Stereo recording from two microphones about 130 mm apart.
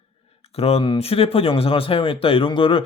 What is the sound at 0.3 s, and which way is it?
Speech, 50° left (ahead or behind).